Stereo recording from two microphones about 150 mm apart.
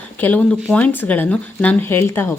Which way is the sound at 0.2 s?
10° left (ahead or behind).